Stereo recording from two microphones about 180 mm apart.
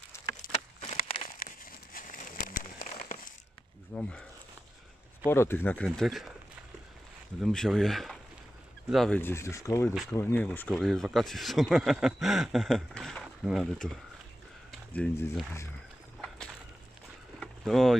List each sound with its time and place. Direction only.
0.5 s a sound: 35° left (ahead or behind)
1.4 s crumpling: 50° left (ahead or behind)
3.9 s speech: 5° left (ahead or behind)
5.9 s speech: centre (ahead or behind)
7.3 s speech: centre (ahead or behind)
9.2 s speech: 15° left (ahead or behind)
14.7 s a sound: 10° left (ahead or behind)
17.4 s boat: centre (ahead or behind)